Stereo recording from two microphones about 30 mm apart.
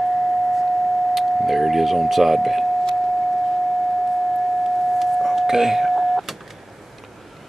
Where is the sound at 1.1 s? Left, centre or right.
Centre.